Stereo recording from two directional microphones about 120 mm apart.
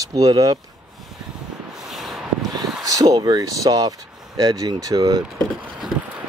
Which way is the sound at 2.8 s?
30° right (ahead or behind).